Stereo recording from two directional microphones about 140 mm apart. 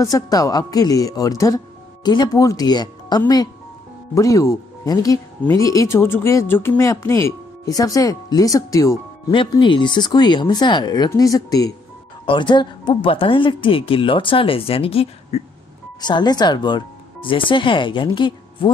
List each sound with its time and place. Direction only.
0.0 s speech: 25° left (ahead or behind)
9.3 s speech: 35° left (ahead or behind)
16.1 s speech: 30° left (ahead or behind)